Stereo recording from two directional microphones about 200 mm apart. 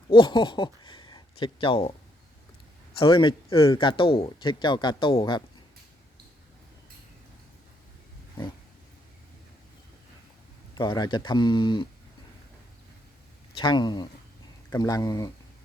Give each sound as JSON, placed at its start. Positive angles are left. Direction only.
{"t": 0.1, "sound": "speech", "side_deg": 25}
{"t": 3.0, "sound": "speech", "side_deg": 25}
{"t": 10.8, "sound": "speech", "side_deg": 20}
{"t": 13.6, "sound": "speech", "side_deg": 20}